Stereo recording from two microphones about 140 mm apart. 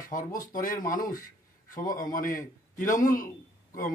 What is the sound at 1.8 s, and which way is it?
A man's voice, 70° left (ahead or behind).